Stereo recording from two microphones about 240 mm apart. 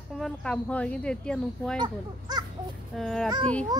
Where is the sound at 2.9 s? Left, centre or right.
Centre.